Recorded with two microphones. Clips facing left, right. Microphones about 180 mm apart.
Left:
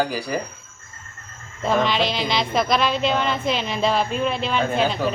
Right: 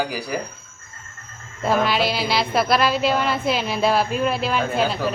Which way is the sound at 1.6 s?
5° right (ahead or behind).